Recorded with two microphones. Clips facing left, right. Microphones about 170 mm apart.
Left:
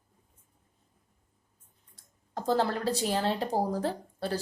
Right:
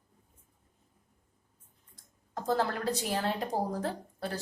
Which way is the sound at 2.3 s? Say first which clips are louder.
Left 2 dB; 30° left (ahead or behind).